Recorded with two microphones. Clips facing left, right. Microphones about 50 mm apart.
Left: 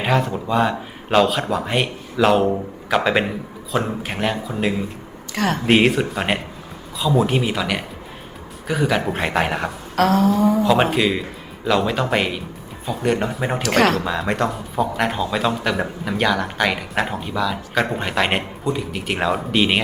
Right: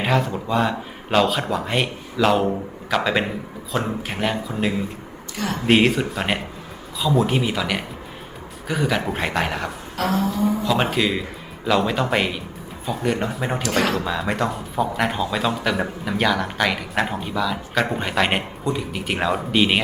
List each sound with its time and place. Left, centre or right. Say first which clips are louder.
0.0 s speech: left 1 dB; centre
5.3 s speech: left 6 dB; left
5.6 s speech: even; centre
9.9 s a sound: left 6 dB; left
10.6 s speech: left 4 dB; centre
13.6 s speech: left 5 dB; left
14.0 s speech: left 2 dB; centre